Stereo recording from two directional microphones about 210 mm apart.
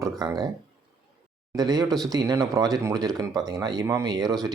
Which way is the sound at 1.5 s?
20° right (ahead or behind).